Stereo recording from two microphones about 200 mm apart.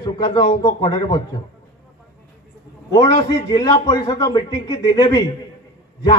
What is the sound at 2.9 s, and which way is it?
A man's voice, 20° left (ahead or behind).